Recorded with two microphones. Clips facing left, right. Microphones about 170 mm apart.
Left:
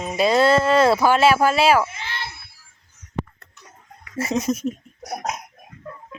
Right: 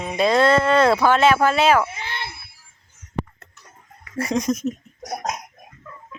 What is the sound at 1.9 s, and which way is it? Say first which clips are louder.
Speech: right 1 dB; 55° right (ahead or behind).